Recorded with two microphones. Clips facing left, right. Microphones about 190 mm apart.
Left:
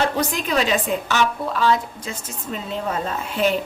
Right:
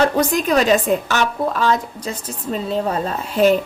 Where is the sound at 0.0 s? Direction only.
45° right (ahead or behind).